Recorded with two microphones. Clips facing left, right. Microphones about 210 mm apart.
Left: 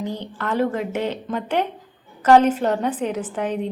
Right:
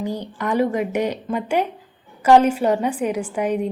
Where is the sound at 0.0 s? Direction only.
10° right (ahead or behind).